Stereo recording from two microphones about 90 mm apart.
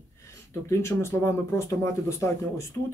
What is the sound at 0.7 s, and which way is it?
Speech, 30° left (ahead or behind).